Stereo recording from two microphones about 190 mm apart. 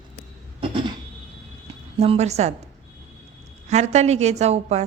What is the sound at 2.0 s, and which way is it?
Speech, 35° right (ahead or behind).